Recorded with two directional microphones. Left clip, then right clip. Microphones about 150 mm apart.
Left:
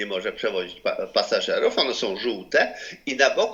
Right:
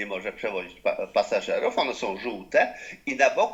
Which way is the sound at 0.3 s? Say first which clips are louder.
Left 4 dB; 40° left (ahead or behind).